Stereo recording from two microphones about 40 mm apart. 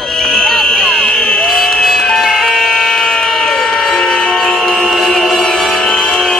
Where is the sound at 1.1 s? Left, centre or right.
Centre.